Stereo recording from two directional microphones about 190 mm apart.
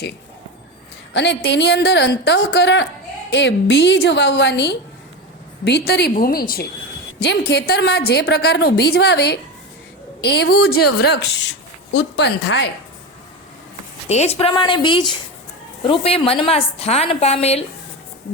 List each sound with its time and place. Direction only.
1.1 s a woman's voice: 70° left (ahead or behind)
14.1 s a woman's voice: 35° left (ahead or behind)